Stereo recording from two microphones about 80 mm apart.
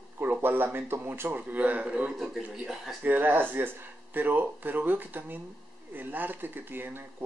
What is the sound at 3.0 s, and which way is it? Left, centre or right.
Speech, right.